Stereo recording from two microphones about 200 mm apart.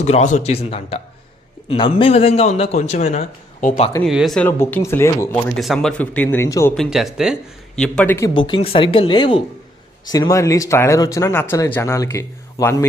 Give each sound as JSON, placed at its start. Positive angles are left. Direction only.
{"t": 0.0, "sound": "a man's voice", "side_deg": 35}
{"t": 4.0, "sound": "speech", "side_deg": 0}
{"t": 5.5, "sound": "speech", "side_deg": 0}
{"t": 6.7, "sound": "speech", "side_deg": 0}
{"t": 8.3, "sound": "speech", "side_deg": 25}